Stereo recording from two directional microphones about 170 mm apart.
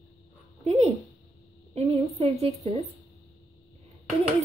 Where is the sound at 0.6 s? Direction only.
40° right (ahead or behind).